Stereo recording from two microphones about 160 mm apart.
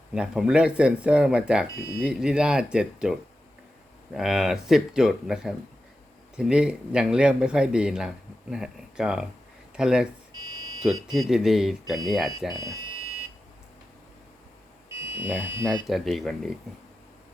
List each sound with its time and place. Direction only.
0.1 s speech: 5° right (ahead or behind)
10.3 s smoke detector: 25° right (ahead or behind)
11.0 s speech: centre (ahead or behind)
12.5 s speech: 20° right (ahead or behind)
14.8 s buzzer: 15° right (ahead or behind)
15.9 s speech: centre (ahead or behind)